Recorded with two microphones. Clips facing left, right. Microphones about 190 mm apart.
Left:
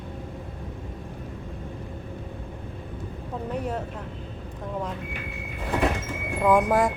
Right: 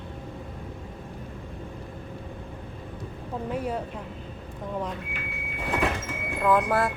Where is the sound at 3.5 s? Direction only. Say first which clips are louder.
Even; centre (ahead or behind).